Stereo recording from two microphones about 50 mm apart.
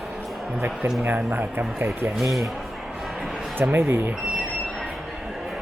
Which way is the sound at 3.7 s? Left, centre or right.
Right.